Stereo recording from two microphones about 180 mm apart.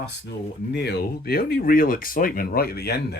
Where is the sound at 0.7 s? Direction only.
65° left (ahead or behind).